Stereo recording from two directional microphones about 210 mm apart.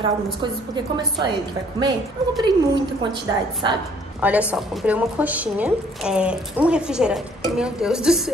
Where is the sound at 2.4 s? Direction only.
20° right (ahead or behind).